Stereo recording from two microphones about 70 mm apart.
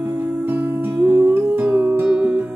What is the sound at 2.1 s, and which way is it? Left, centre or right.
Music, centre.